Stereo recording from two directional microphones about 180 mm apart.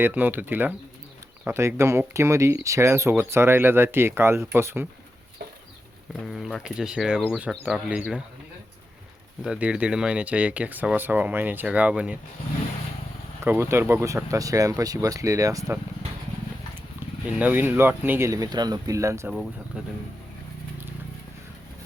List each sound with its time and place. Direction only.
0.0 s speech: 10° right (ahead or behind)
6.2 s speech: centre (ahead or behind)
9.4 s speech: 5° right (ahead or behind)
13.4 s speech: 15° right (ahead or behind)
17.2 s speech: 10° right (ahead or behind)
19.3 s speech: 5° right (ahead or behind)